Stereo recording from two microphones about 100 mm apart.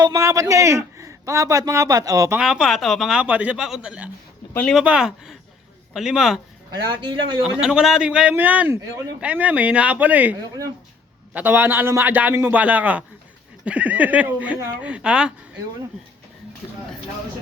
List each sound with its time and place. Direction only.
0.0 s a man's voice: 35° right (ahead or behind)
2.4 s speech: 5° right (ahead or behind)
3.2 s speech: 15° right (ahead or behind)
6.7 s a man's voice: 50° right (ahead or behind)
7.4 s speech: 5° right (ahead or behind)
11.3 s a man's voice: 20° right (ahead or behind)